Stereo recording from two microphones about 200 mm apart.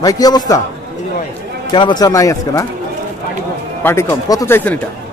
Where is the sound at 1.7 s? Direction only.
20° left (ahead or behind).